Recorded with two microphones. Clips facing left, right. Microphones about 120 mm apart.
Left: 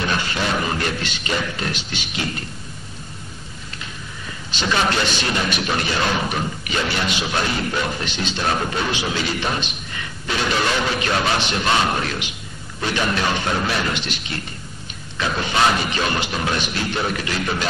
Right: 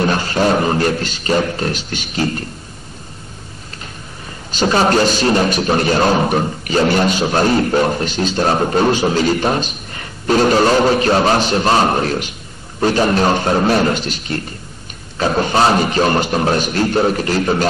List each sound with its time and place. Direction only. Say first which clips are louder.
0.0 s a man's voice: right 8 dB; 40° right (ahead or behind)
4.5 s a man's voice: right 7 dB; 40° right (ahead or behind)